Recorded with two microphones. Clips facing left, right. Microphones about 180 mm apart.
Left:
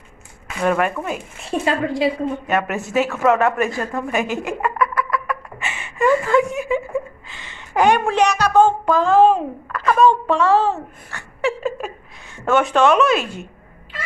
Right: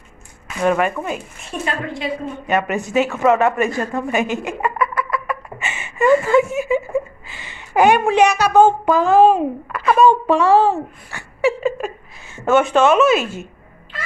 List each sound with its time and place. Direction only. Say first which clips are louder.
0.6 s speech: right 1 dB; centre (ahead or behind)
1.4 s speech: left 8 dB; 30° left (ahead or behind)
2.4 s a sound: right 2 dB; centre (ahead or behind)